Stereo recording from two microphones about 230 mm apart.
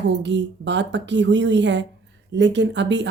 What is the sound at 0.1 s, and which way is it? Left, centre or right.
A woman's voice, right.